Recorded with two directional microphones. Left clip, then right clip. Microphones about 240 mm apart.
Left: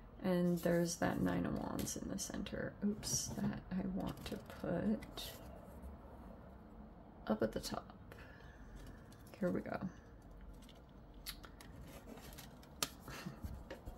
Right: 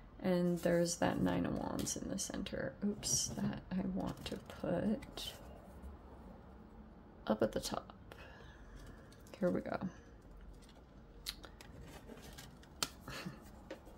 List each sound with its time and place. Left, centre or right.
0.2 s speech: centre
7.2 s speech: centre
9.4 s speech: centre